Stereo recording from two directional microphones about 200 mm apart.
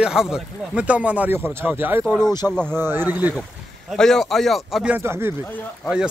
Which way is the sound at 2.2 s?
20° left (ahead or behind).